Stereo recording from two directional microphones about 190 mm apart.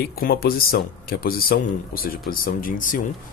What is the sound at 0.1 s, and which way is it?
Speech, 55° left (ahead or behind).